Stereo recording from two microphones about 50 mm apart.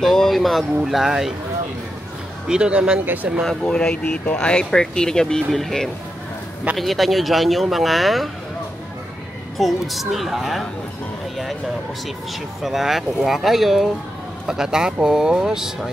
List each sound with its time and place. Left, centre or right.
0.0 s speech: centre
2.4 s speech: centre
3.6 s speech: centre
9.6 s speech: centre
12.6 s speech: centre